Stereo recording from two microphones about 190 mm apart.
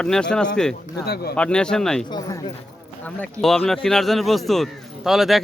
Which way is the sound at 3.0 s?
5° left (ahead or behind).